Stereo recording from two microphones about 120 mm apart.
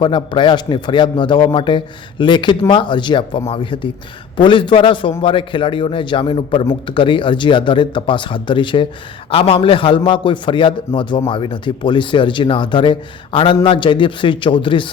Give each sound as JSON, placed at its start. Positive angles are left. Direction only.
{"t": 0.0, "sound": "a man's voice", "side_deg": 40}